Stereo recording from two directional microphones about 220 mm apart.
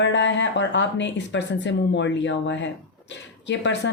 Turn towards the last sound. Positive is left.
turn(degrees=55)  # may be behind; listen again after turning